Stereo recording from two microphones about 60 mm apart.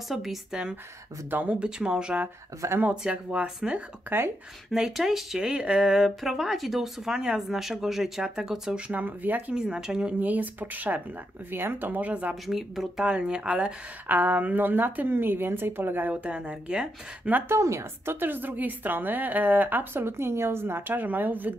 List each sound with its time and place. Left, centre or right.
0.1 s speech: centre
1.3 s speech: right
4.1 s speech: right
4.7 s speech: centre; by 9.6 s right
9.6 s speech: centre
10.2 s speech: right
12.4 s speech: centre
13.0 s speech: centre
14.0 s a woman's voice: right
16.1 s speech: centre
17.3 s a woman's voice: right
17.6 s a woman's voice: right
18.2 s a woman's voice: right